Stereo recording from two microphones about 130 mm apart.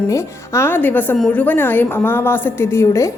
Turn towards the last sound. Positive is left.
turn(degrees=20)  # may be behind; listen again after turning